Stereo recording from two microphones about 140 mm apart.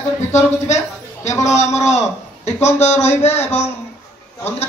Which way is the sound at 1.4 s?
55° left (ahead or behind).